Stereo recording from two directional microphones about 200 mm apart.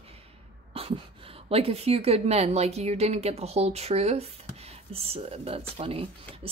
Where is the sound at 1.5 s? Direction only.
30° right (ahead or behind).